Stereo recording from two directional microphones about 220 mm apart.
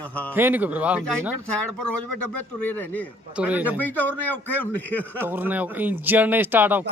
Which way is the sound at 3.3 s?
5° right (ahead or behind).